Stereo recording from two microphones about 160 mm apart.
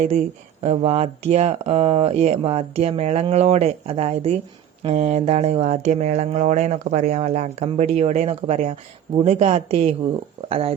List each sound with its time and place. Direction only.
0.6 s speech: 40° right (ahead or behind)